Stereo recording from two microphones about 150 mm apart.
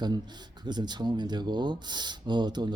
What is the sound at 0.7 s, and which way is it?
Speech, 30° right (ahead or behind).